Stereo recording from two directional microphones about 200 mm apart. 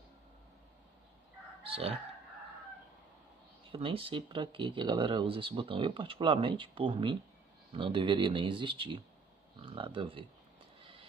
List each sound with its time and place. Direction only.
1.6 s crowing: 30° right (ahead or behind)
3.7 s speech: 25° right (ahead or behind)
10.8 s music: 25° right (ahead or behind)